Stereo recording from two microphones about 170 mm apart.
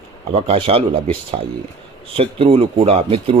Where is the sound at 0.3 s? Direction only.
35° right (ahead or behind).